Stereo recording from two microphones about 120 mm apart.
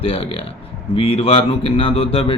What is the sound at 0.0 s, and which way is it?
Speech, 50° left (ahead or behind).